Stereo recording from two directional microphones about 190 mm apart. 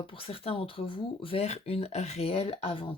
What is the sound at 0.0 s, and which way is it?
A woman's voice, 30° left (ahead or behind).